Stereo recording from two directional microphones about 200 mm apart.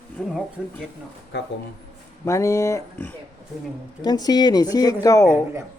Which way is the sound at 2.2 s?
15° left (ahead or behind).